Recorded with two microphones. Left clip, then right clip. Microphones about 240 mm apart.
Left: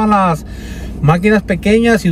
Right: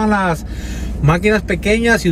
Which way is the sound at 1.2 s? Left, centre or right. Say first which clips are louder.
Left 2 dB; centre.